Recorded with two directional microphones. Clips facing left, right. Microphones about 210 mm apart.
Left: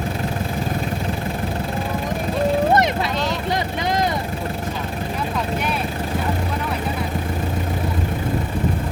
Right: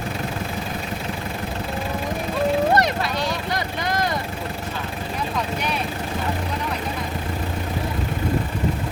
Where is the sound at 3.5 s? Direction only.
20° left (ahead or behind).